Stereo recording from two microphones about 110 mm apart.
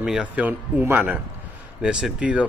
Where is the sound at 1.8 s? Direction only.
5° right (ahead or behind).